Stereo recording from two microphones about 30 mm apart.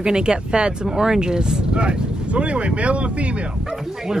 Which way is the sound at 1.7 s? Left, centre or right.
Right.